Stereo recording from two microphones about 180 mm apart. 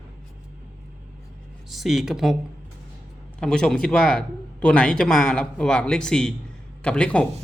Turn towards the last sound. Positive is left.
turn(degrees=5)  # may be behind; listen again after turning